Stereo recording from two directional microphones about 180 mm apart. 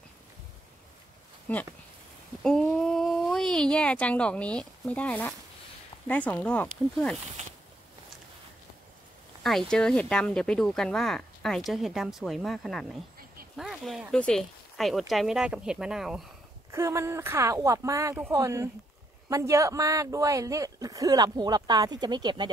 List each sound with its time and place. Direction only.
1.5 s speech: 10° left (ahead or behind)
9.4 s speech: centre (ahead or behind)
16.7 s speech: 15° right (ahead or behind)